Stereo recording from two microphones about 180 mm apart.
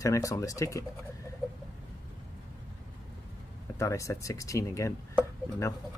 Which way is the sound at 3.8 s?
15° left (ahead or behind).